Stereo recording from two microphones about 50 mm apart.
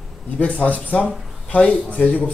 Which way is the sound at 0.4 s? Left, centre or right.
Left.